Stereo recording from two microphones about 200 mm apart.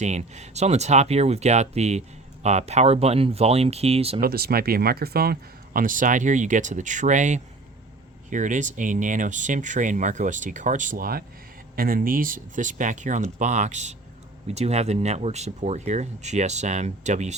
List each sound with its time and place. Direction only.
0.0 s speech: 35° right (ahead or behind)
4.2 s speech: 50° right (ahead or behind)